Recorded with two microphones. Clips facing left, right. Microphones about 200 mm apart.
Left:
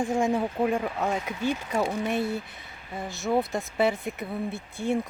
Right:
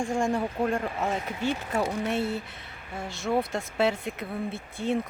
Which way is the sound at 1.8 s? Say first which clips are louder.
Left 1 dB; 15° left (ahead or behind).